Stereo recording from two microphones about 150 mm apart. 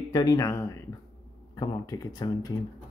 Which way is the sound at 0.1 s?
25° left (ahead or behind).